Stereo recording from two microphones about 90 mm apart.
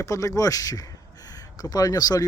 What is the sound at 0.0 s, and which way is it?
Speech, 35° left (ahead or behind).